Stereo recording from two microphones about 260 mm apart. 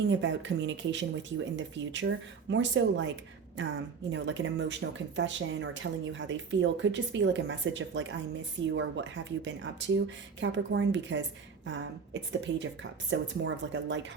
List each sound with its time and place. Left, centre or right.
0.1 s speech: right
12.5 s speech: right